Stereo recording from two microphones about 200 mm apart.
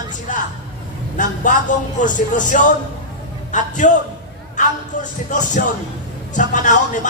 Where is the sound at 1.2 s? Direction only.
40° left (ahead or behind).